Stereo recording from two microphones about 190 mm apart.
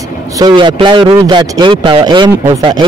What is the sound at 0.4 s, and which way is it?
Speech, 25° right (ahead or behind).